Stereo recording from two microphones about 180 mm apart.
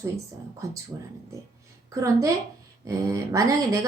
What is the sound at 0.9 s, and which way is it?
Speech, 20° right (ahead or behind).